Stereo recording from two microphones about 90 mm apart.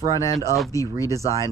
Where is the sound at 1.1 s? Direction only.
35° right (ahead or behind).